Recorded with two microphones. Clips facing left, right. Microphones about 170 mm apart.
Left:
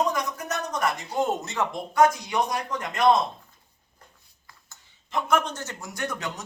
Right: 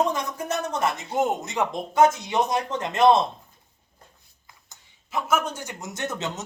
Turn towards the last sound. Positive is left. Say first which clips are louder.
# right 2 dB
turn(degrees=-25)  # may be behind; listen again after turning